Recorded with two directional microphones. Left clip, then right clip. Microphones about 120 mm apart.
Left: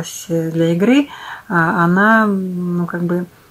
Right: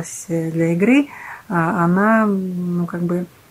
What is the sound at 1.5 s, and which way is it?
Speech, 25° right (ahead or behind).